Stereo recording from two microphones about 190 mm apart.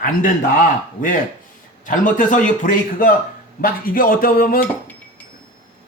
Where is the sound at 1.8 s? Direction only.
40° left (ahead or behind).